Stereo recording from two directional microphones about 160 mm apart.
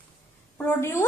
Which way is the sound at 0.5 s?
15° left (ahead or behind).